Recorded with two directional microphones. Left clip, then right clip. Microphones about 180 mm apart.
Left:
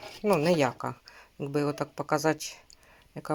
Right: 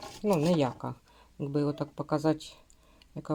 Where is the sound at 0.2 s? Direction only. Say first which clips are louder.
Left 3 dB; centre (ahead or behind).